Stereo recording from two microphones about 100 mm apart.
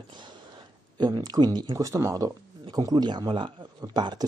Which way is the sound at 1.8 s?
30° right (ahead or behind).